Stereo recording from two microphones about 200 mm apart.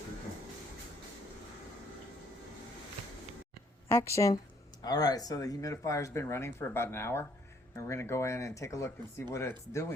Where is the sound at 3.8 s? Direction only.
15° left (ahead or behind).